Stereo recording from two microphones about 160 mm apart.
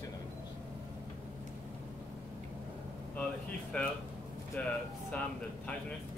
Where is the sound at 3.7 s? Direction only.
10° left (ahead or behind).